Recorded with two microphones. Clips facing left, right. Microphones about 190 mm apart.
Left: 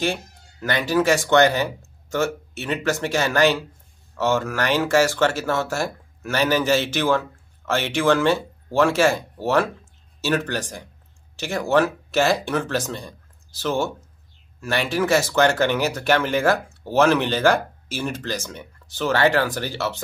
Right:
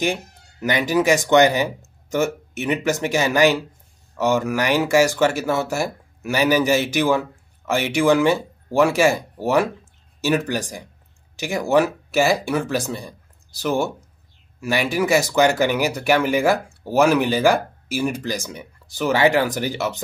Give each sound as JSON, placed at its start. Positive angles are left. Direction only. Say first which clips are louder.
{"t": 0.0, "sound": "speech", "louder": "right 2 dB", "side_deg": -15}